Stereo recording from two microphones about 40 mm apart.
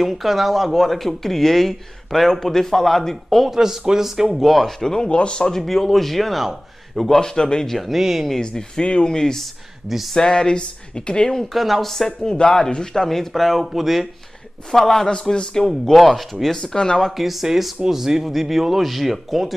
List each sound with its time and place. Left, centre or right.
0.0 s speech: centre
3.4 s speech: centre
4.7 s speech: centre
5.5 s speech: centre
7.2 s speech: centre
7.7 s speech: centre
8.3 s speech: centre
11.3 s speech: centre
12.3 s speech: centre
15.0 s speech: centre
15.6 s speech: centre
16.6 s speech: centre
17.2 s speech: centre